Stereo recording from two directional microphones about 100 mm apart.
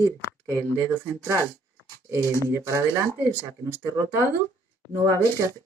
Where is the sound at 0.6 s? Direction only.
15° left (ahead or behind).